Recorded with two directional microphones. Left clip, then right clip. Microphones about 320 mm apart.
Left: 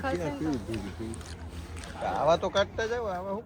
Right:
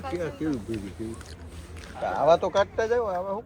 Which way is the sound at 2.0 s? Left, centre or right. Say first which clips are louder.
Right 4 dB; right.